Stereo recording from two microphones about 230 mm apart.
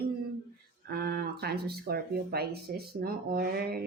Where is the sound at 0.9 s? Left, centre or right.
Right.